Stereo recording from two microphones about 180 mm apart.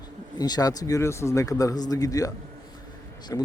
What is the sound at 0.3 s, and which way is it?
Speech, 20° left (ahead or behind).